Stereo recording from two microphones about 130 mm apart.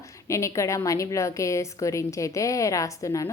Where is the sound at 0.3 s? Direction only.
25° left (ahead or behind).